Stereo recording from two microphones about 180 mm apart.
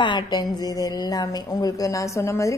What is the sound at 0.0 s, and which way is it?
A woman's voice, 25° left (ahead or behind).